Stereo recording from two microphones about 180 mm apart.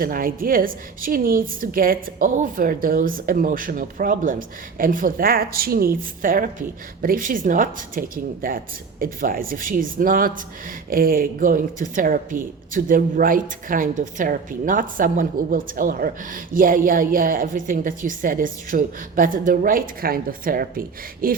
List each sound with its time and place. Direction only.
0.0 s speech: 55° right (ahead or behind)